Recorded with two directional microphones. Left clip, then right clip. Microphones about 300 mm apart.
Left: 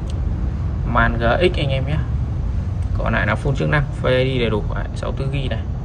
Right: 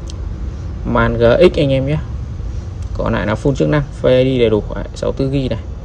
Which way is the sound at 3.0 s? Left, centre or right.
Centre.